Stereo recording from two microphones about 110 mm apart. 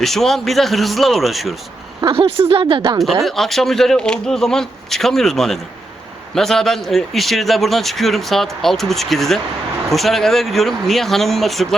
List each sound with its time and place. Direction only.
0.0 s a man's voice: centre (ahead or behind)
2.0 s speech: 55° right (ahead or behind)
3.2 s a man's voice: centre (ahead or behind)